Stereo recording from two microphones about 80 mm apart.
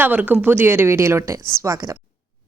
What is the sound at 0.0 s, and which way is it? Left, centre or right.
A woman's voice, right.